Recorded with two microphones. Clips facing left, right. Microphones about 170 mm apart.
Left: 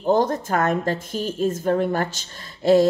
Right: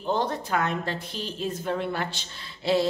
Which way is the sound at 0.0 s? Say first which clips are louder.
Left 7 dB; 45° left (ahead or behind).